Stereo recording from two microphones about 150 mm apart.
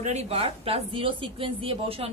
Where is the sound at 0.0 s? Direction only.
45° right (ahead or behind).